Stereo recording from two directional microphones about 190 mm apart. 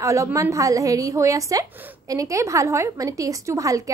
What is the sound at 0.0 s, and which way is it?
A woman's voice, 15° right (ahead or behind).